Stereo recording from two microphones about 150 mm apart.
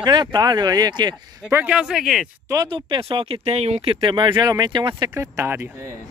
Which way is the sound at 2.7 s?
35° right (ahead or behind).